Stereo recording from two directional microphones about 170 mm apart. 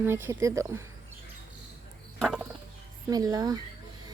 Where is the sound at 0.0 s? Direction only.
15° right (ahead or behind).